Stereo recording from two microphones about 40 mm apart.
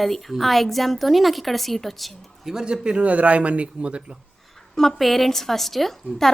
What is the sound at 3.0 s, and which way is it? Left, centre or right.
Speech, right.